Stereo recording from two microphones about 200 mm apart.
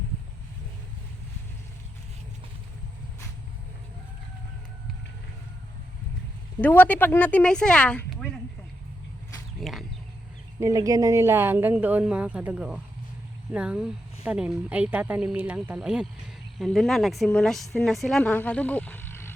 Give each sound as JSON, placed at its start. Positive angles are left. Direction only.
{"t": 6.6, "sound": "speech", "side_deg": 10}
{"t": 9.6, "sound": "speech", "side_deg": 0}
{"t": 10.6, "sound": "a woman's voice", "side_deg": -15}